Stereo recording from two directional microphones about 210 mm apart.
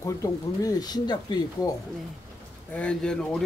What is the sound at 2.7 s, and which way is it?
Speech, 5° left (ahead or behind).